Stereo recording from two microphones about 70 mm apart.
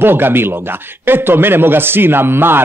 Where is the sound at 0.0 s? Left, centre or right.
Right.